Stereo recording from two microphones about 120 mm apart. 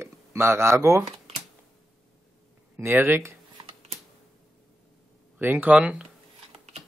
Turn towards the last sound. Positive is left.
turn(degrees=-10)  # may be behind; listen again after turning